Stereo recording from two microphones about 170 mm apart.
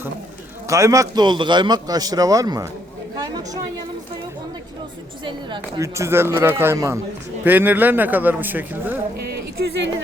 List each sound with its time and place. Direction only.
0.7 s a man's voice: 20° right (ahead or behind)
3.2 s chatter: 20° right (ahead or behind)
5.2 s a man's voice: 30° right (ahead or behind)
5.8 s a man's voice: 15° right (ahead or behind)
9.1 s a sound: 65° right (ahead or behind); by 9.9 s 85° right